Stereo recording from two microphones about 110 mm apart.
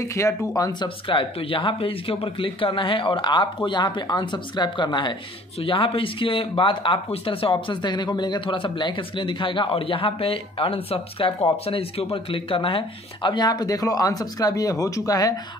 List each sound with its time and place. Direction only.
0.0 s speech: 25° left (ahead or behind)
0.6 s speech: 35° left (ahead or behind)
0.8 s speech: 50° left (ahead or behind); by 15.3 s 35° left (ahead or behind)